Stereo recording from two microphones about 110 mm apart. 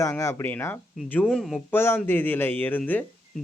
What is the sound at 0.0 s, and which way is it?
Speech, 25° left (ahead or behind).